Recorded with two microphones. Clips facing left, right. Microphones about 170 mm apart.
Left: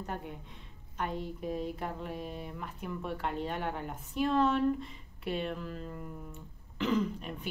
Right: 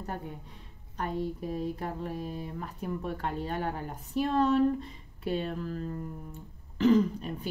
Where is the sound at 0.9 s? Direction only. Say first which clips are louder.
Right 4 dB; 40° right (ahead or behind).